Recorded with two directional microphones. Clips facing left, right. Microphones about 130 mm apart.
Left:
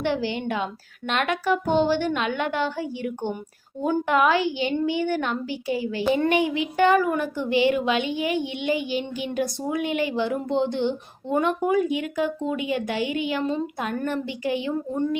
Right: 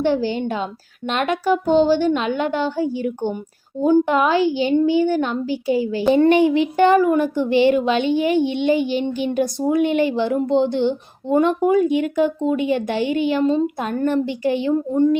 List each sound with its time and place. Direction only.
0.0 s a child's voice: 35° right (ahead or behind)